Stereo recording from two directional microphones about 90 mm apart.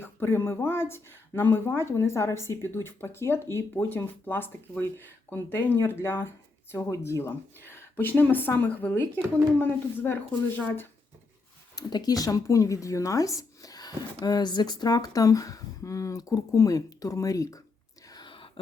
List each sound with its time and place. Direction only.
0.0 s speech: 25° left (ahead or behind)
11.8 s speech: 50° left (ahead or behind)
18.1 s whispering: 65° left (ahead or behind)